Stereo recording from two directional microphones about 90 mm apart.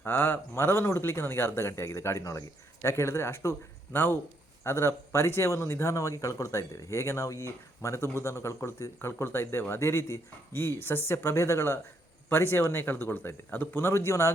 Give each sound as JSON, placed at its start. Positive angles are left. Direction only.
{"t": 0.0, "sound": "speech", "side_deg": 25}